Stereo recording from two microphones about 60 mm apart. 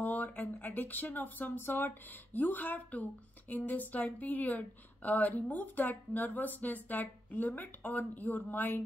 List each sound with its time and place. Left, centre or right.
0.0 s speech: left